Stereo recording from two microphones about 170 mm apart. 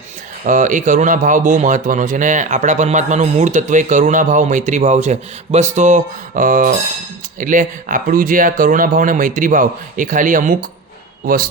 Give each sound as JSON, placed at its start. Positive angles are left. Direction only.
{"t": 0.4, "sound": "a man's voice", "side_deg": -50}